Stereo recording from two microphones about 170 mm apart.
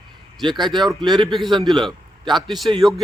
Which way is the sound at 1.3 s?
Centre (ahead or behind).